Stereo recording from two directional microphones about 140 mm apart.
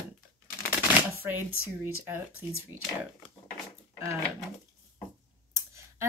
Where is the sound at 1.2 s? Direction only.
15° right (ahead or behind).